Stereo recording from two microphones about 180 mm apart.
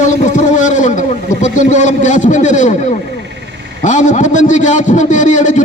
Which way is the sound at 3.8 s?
40° left (ahead or behind).